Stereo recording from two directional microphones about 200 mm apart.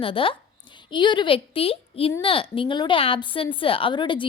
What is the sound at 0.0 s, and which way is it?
A woman's voice, 25° left (ahead or behind).